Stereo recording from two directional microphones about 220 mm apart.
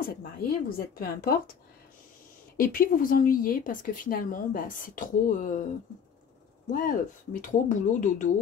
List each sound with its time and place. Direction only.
0.0 s a woman's voice: 40° left (ahead or behind)
6.7 s speech: 40° left (ahead or behind)